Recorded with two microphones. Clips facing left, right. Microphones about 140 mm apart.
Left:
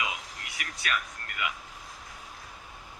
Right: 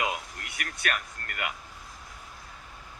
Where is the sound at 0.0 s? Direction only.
50° right (ahead or behind).